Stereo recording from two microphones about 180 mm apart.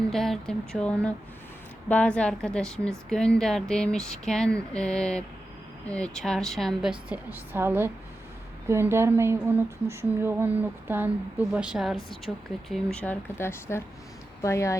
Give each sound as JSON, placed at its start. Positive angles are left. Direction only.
{"t": 0.1, "sound": "speech", "side_deg": 0}